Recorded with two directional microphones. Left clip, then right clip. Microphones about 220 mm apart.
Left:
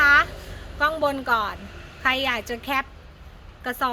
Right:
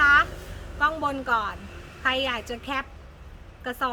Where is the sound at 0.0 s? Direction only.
25° left (ahead or behind).